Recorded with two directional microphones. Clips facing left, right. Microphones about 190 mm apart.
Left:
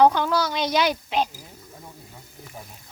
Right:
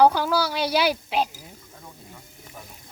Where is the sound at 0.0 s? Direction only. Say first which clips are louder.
Even; 5° right (ahead or behind).